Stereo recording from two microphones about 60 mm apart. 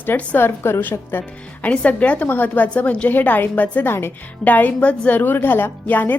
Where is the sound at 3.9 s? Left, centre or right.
Left.